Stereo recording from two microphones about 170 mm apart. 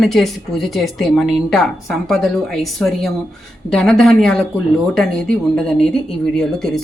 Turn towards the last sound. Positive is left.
turn(degrees=0)  # may be behind; listen again after turning